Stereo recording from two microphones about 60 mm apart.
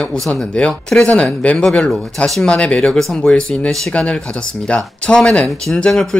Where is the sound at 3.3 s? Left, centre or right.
Centre.